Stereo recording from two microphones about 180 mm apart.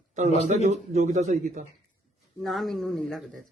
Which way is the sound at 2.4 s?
Centre (ahead or behind).